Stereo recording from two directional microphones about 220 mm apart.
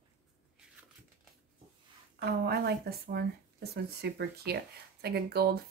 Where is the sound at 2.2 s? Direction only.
45° right (ahead or behind).